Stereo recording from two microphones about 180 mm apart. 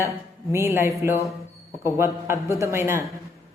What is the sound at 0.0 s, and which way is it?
Speech, 15° right (ahead or behind).